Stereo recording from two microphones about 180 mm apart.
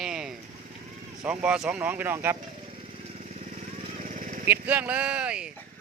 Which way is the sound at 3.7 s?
45° right (ahead or behind).